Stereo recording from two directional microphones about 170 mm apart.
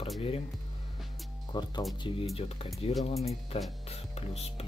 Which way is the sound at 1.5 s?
25° left (ahead or behind).